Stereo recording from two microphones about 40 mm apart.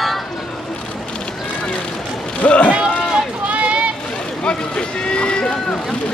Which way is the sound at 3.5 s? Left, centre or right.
Right.